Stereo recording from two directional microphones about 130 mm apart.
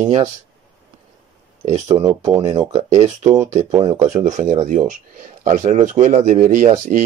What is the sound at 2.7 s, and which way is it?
Speech, 65° right (ahead or behind).